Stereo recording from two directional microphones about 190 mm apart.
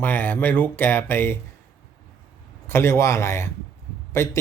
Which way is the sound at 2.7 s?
10° left (ahead or behind).